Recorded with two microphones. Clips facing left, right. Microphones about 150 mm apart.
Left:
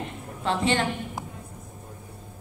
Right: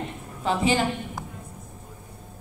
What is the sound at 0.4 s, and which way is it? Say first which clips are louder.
Speech: right 2 dB; 5° right (ahead or behind).